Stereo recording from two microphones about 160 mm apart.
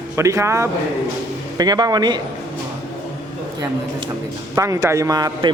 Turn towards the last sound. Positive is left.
turn(degrees=-25)  # may be behind; listen again after turning